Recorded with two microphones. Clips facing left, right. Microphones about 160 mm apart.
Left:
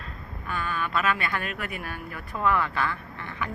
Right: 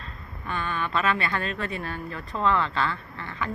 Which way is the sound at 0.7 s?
25° right (ahead or behind).